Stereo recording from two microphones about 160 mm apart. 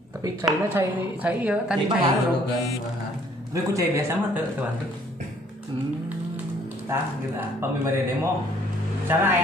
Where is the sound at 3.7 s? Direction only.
15° right (ahead or behind).